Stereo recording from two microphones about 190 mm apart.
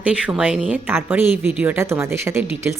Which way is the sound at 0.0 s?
5° right (ahead or behind).